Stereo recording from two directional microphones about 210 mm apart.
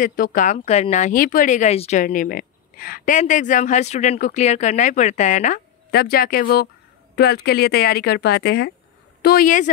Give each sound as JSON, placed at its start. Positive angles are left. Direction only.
{"t": 0.0, "sound": "speech", "side_deg": 40}